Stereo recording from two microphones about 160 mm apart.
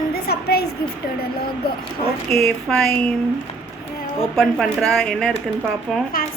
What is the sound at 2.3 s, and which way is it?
Speech, 5° left (ahead or behind).